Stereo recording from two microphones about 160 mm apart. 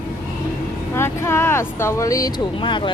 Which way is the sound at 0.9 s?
15° left (ahead or behind).